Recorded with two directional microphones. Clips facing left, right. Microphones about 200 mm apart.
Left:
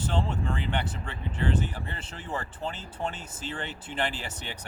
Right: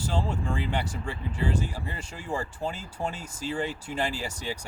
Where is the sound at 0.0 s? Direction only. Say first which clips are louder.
Even; 10° right (ahead or behind).